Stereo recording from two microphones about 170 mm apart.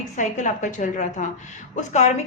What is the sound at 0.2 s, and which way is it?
A man's voice, 45° left (ahead or behind).